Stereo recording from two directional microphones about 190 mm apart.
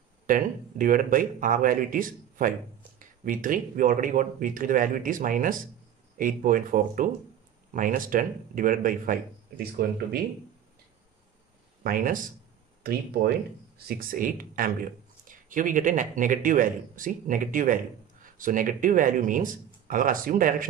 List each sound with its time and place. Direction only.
0.3 s speech: 45° right (ahead or behind)
11.8 s speech: 45° right (ahead or behind)
13.7 s speech: 50° right (ahead or behind)